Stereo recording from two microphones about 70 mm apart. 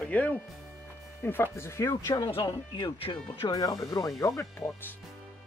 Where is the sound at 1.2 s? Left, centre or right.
Left.